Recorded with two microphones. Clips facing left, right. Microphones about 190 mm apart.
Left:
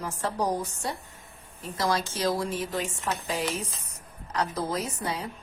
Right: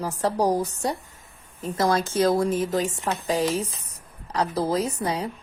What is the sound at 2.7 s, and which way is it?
A woman's voice, 40° right (ahead or behind).